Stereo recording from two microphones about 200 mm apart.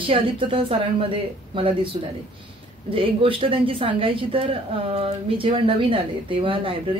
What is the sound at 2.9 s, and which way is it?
Speech, 25° right (ahead or behind).